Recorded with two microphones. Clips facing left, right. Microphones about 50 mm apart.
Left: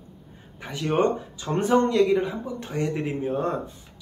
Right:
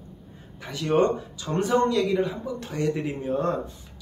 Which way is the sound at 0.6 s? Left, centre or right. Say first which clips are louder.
Right 1 dB; left.